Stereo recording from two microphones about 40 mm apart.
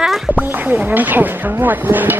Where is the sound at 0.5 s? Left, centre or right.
Right.